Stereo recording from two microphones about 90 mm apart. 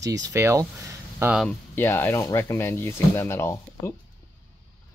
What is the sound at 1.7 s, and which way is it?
Speech, 25° left (ahead or behind).